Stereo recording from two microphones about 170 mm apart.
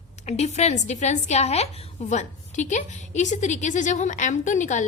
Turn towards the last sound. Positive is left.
turn(degrees=45)  # may be behind; listen again after turning